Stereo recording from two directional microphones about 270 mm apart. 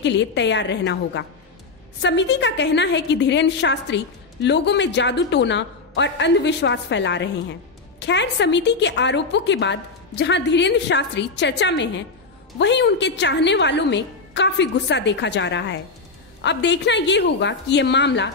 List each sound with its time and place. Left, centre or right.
0.0 s a woman's voice: left